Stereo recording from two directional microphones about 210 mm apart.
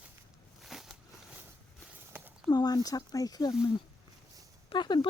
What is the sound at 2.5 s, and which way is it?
Speech, 20° left (ahead or behind).